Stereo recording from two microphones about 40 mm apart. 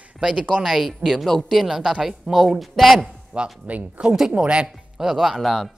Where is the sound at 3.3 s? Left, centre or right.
Right.